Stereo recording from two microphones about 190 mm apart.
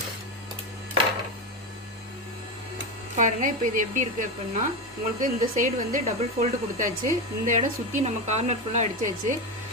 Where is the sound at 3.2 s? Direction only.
45° right (ahead or behind).